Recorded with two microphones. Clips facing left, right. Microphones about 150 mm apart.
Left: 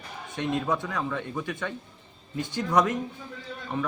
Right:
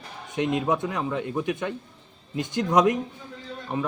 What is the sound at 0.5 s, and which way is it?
Speech, 15° right (ahead or behind).